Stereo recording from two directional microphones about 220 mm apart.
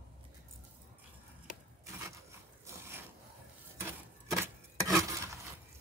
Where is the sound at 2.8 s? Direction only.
10° right (ahead or behind).